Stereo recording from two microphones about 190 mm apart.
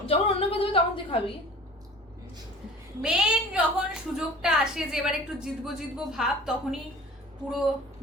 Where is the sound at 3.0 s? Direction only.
5° right (ahead or behind).